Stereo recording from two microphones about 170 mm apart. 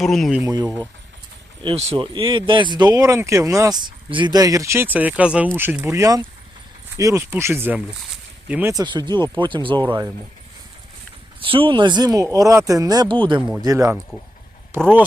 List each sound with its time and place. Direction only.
0.0 s speech: centre (ahead or behind)
0.4 s speech: 20° right (ahead or behind)
1.6 s speech: 35° right (ahead or behind); by 8.7 s 10° right (ahead or behind)
8.7 s speech: 25° right (ahead or behind)
11.3 s speech: 30° right (ahead or behind); by 14.9 s 15° right (ahead or behind)